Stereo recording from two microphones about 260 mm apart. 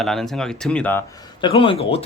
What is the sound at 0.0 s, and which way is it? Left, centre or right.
Speech, centre.